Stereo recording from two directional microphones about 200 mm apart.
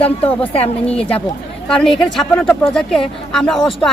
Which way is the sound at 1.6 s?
5° left (ahead or behind).